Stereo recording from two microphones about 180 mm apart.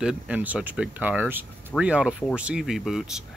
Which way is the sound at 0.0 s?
5° right (ahead or behind).